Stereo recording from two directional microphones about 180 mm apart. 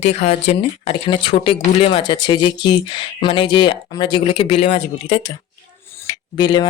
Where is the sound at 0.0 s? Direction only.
35° left (ahead or behind).